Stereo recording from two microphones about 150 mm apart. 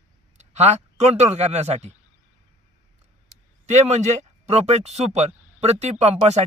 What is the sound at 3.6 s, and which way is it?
A man's voice, 50° right (ahead or behind).